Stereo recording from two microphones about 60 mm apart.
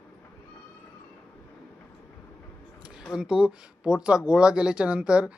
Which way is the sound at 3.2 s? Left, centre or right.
Centre.